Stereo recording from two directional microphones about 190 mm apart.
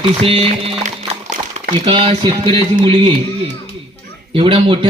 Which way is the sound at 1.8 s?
30° right (ahead or behind).